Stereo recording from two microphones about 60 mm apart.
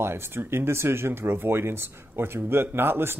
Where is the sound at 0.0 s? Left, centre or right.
Right.